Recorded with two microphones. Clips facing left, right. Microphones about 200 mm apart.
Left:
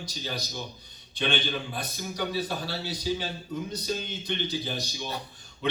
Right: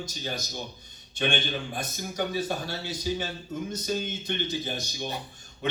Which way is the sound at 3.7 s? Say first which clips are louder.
Right 2 dB; 50° right (ahead or behind).